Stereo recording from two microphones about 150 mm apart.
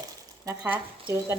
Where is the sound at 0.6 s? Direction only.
10° right (ahead or behind).